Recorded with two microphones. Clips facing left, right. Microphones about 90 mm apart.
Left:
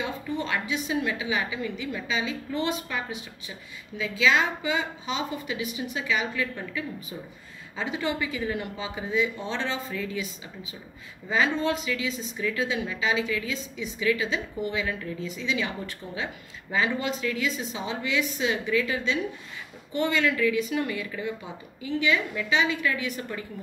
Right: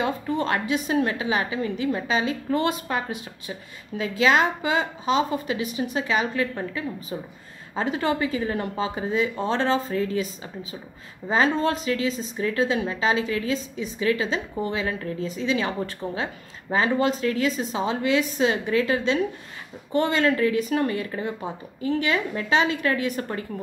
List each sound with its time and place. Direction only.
0.0 s a woman's voice: 45° right (ahead or behind)